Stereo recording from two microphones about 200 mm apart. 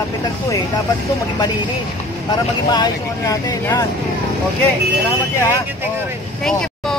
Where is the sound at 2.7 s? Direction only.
15° left (ahead or behind).